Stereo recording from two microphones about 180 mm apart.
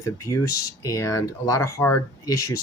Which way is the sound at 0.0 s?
15° left (ahead or behind).